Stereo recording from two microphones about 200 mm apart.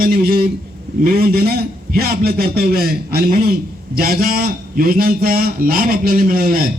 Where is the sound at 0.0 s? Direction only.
45° right (ahead or behind).